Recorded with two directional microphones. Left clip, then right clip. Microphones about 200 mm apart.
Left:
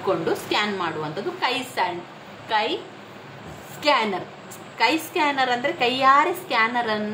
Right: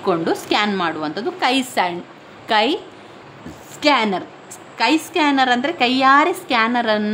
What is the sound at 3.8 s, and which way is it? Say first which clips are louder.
A woman's voice: right 4 dB; 40° right (ahead or behind).